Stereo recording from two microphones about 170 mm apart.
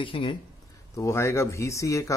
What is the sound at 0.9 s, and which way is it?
Speech, 15° left (ahead or behind).